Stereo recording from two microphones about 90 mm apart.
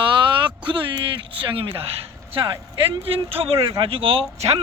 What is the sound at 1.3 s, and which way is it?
Speech, 75° right (ahead or behind).